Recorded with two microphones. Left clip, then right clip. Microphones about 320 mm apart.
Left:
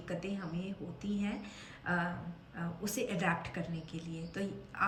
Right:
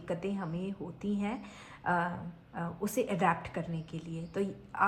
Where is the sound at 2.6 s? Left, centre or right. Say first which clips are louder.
Right 5 dB; centre.